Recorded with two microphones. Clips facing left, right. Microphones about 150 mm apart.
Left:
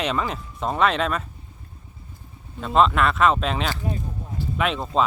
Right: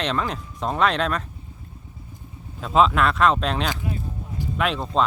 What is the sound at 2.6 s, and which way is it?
Speech, centre (ahead or behind).